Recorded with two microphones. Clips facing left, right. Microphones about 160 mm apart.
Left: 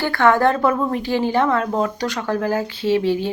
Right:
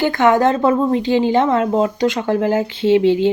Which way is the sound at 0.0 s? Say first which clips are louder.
Right 2 dB; 20° right (ahead or behind).